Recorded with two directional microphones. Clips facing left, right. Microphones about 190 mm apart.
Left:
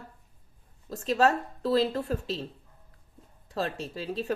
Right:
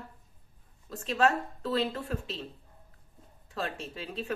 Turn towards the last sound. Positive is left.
turn(degrees=35)  # may be behind; listen again after turning